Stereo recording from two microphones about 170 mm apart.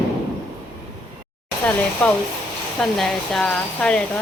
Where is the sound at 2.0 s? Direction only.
5° left (ahead or behind).